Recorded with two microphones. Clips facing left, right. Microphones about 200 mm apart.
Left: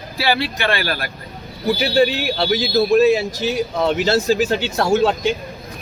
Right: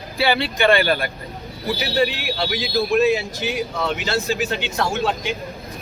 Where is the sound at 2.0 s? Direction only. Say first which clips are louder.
Left 4 dB; 40° left (ahead or behind).